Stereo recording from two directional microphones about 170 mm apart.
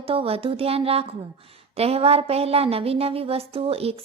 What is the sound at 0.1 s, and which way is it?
Speech, 35° right (ahead or behind).